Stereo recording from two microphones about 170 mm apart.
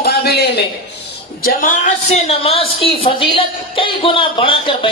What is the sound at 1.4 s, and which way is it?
A woman's voice, 50° left (ahead or behind).